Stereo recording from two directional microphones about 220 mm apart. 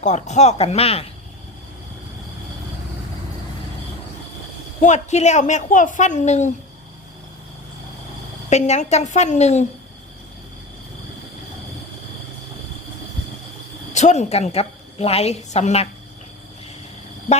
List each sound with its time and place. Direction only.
0.0 s a woman's voice: 30° left (ahead or behind)
4.8 s a woman's voice: 30° left (ahead or behind)
8.4 s a woman's voice: 30° left (ahead or behind)
13.9 s a woman's voice: 30° left (ahead or behind)